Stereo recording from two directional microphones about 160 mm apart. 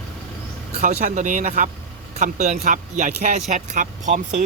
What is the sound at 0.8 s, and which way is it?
Speech, 50° right (ahead or behind).